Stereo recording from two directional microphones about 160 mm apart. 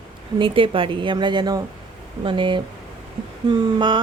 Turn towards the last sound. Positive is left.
turn(degrees=-30)  # may be behind; listen again after turning